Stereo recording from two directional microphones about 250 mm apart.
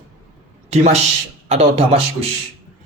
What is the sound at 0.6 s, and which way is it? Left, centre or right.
A man's voice, right.